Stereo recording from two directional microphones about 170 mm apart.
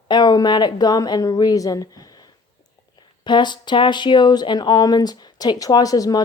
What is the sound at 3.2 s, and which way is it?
Speech, 25° left (ahead or behind).